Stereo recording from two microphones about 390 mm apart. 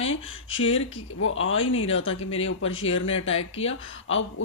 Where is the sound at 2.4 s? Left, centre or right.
Left.